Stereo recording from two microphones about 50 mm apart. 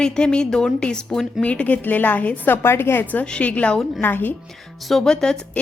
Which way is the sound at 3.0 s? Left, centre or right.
Left.